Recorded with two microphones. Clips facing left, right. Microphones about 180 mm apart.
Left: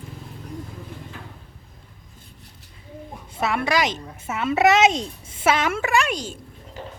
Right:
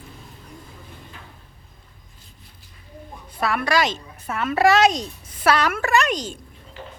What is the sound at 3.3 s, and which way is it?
A woman's voice, 25° left (ahead or behind).